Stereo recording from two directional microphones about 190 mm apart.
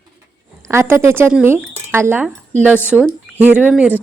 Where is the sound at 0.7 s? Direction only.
15° right (ahead or behind).